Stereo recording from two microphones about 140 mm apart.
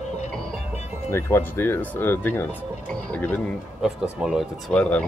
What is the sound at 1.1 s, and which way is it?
Speech, 15° left (ahead or behind).